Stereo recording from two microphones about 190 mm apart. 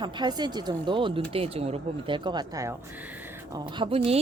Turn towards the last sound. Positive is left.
turn(degrees=-30)  # may be behind; listen again after turning